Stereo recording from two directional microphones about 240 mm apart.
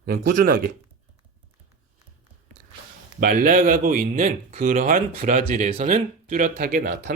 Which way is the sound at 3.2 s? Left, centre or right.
Right.